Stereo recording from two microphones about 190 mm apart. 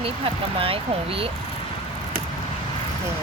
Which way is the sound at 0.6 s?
30° right (ahead or behind).